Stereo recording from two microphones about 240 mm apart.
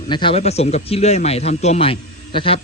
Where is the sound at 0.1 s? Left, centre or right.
Left.